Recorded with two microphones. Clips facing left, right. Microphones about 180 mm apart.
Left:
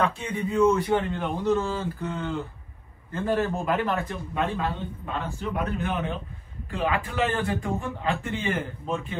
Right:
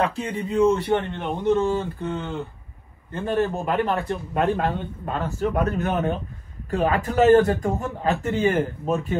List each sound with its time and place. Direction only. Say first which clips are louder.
0.0 s speech: right 2 dB; 35° right (ahead or behind)
4.3 s a man's voice: right 6 dB; 50° right (ahead or behind)